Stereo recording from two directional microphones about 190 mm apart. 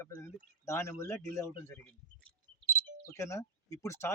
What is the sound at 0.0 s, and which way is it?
A man's voice, 15° left (ahead or behind).